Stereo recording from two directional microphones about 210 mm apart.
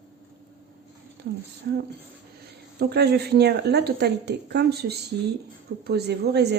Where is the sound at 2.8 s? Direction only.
50° right (ahead or behind).